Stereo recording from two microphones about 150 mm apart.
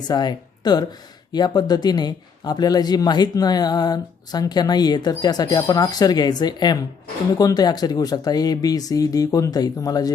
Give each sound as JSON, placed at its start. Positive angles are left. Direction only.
{"t": 0.1, "sound": "speech", "side_deg": 30}